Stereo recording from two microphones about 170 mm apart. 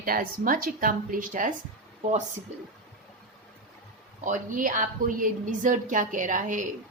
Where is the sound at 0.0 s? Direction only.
60° right (ahead or behind).